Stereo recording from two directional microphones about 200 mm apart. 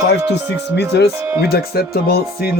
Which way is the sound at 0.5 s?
60° left (ahead or behind).